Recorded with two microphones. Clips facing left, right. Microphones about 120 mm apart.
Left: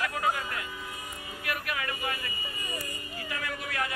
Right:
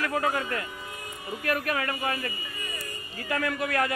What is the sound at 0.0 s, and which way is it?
Speech, 45° right (ahead or behind).